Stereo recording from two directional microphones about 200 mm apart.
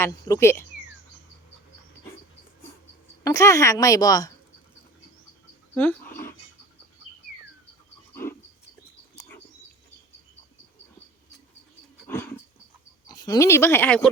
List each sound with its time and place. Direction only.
0.0 s a woman's voice: 15° left (ahead or behind)
3.2 s a woman's voice: 15° left (ahead or behind)
5.7 s a sound: 10° left (ahead or behind)
8.1 s cricket: 10° left (ahead or behind)
12.0 s wild animals: 10° left (ahead or behind)
13.1 s speech: 20° left (ahead or behind)